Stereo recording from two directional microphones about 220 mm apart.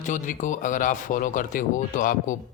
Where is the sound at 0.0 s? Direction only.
35° left (ahead or behind).